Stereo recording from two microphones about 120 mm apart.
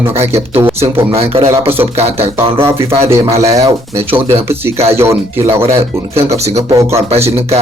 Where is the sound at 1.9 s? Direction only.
65° right (ahead or behind).